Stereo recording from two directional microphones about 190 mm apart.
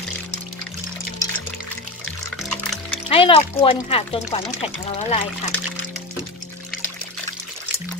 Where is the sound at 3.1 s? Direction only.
30° left (ahead or behind).